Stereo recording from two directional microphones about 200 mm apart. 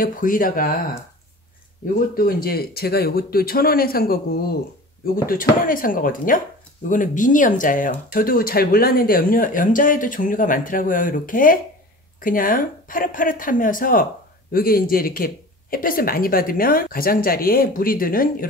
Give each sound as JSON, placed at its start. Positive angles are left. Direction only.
{"t": 0.0, "sound": "speech", "side_deg": 45}
{"t": 2.1, "sound": "speech", "side_deg": 45}